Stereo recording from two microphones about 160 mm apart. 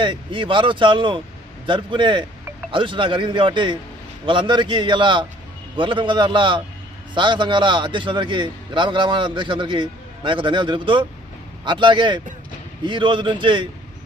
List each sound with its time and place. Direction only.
0.0 s a man's voice: 30° right (ahead or behind)